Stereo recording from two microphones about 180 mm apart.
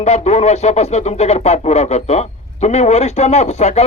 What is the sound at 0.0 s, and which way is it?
Speech, 35° left (ahead or behind).